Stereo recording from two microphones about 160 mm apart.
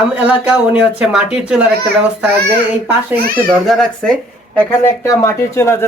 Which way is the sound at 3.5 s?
Centre (ahead or behind).